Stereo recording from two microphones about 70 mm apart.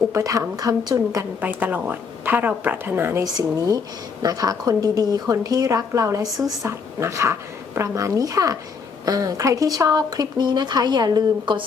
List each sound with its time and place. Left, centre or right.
0.1 s a woman's voice: right
1.4 s a woman's voice: right
3.2 s a woman's voice: right